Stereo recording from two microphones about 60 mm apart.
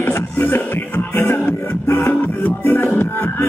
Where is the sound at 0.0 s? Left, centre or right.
Left.